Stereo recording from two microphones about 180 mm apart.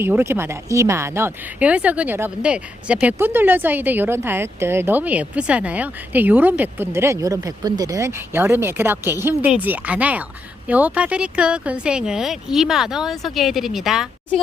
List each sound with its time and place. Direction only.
0.0 s speech: 15° right (ahead or behind)